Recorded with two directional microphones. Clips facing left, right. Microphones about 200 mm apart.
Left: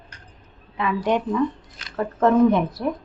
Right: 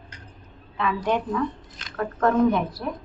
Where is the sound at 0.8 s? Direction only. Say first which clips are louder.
Left 2 dB; 20° left (ahead or behind).